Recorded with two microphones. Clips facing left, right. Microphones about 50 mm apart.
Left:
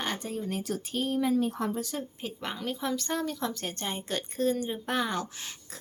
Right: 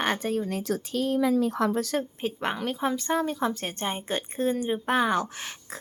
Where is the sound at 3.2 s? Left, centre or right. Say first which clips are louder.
Right 5 dB; right.